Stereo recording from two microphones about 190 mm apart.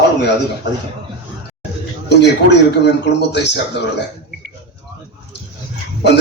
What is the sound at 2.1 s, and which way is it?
A man's voice, 65° left (ahead or behind).